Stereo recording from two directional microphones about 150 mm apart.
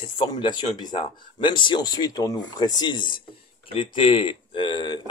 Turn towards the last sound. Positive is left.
turn(degrees=30)  # may be behind; listen again after turning